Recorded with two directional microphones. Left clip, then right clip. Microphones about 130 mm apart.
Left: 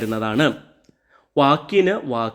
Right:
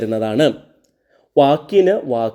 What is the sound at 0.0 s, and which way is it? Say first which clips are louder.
Speech: right 4 dB; 10° right (ahead or behind).